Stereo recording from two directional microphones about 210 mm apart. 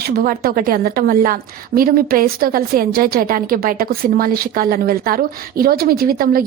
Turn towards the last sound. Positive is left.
turn(degrees=-45)  # may be behind; listen again after turning